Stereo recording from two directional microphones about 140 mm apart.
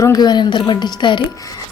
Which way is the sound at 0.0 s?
25° left (ahead or behind).